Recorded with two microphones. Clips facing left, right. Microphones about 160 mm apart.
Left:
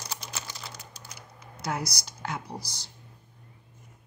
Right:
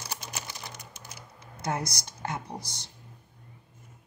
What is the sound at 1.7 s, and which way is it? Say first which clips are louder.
Speech: even; 25° right (ahead or behind).